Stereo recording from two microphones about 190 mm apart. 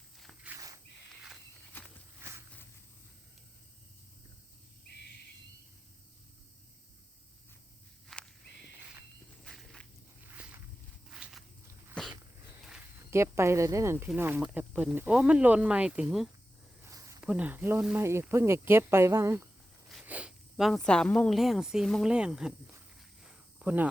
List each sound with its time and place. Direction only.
0.2 s walk: centre (ahead or behind)
0.5 s a sound: 15° right (ahead or behind)
1.7 s walk: 10° left (ahead or behind)
2.2 s walk: 15° right (ahead or behind)
8.1 s walk: centre (ahead or behind)
9.4 s walk: centre (ahead or behind)
10.2 s walk: 10° right (ahead or behind)
13.1 s speech: 15° right (ahead or behind)
16.8 s speech: 15° right (ahead or behind)